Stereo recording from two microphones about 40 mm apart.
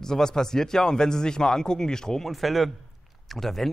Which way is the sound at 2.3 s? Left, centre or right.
Centre.